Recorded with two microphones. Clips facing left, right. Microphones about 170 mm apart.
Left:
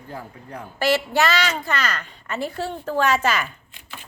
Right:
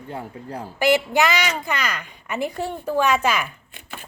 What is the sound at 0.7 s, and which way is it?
A woman's voice, 15° right (ahead or behind).